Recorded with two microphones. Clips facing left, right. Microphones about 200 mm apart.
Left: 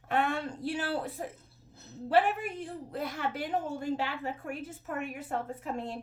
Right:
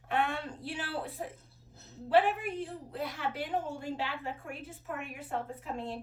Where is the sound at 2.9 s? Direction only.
45° left (ahead or behind).